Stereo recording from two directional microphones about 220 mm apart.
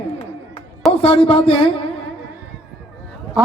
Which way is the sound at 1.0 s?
25° left (ahead or behind).